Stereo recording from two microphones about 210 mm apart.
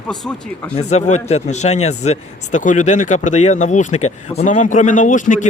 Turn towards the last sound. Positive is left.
turn(degrees=35)  # may be behind; listen again after turning